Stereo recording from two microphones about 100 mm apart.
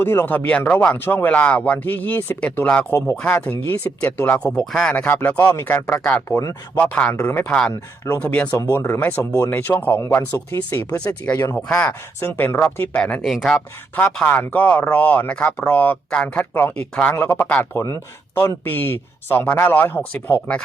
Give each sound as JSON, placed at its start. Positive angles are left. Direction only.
{"t": 0.0, "sound": "speech", "side_deg": 25}
{"t": 4.4, "sound": "speech", "side_deg": 0}
{"t": 5.0, "sound": "speech", "side_deg": 20}
{"t": 6.7, "sound": "speech", "side_deg": 15}
{"t": 7.7, "sound": "speech", "side_deg": 30}
{"t": 8.2, "sound": "speech", "side_deg": 15}
{"t": 8.5, "sound": "speech", "side_deg": 40}
{"t": 8.8, "sound": "speech", "side_deg": 20}
{"t": 10.9, "sound": "speech", "side_deg": 15}
{"t": 13.9, "sound": "speech", "side_deg": 15}
{"t": 17.2, "sound": "speech", "side_deg": 25}
{"t": 17.4, "sound": "speech", "side_deg": 15}
{"t": 17.7, "sound": "speech", "side_deg": 25}